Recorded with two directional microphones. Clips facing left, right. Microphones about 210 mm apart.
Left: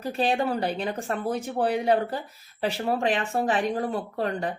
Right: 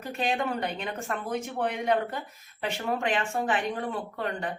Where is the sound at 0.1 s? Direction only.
35° left (ahead or behind).